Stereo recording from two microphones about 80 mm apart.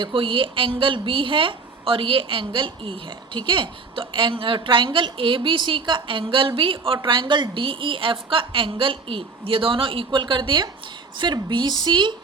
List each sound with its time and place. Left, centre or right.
0.0 s a woman's voice: right